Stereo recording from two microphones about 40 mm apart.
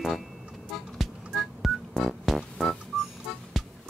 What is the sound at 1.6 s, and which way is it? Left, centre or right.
Telephone dialing, centre.